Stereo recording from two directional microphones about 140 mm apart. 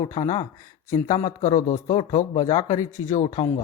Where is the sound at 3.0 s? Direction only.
65° left (ahead or behind).